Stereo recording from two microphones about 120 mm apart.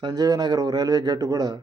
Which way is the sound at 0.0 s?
30° right (ahead or behind).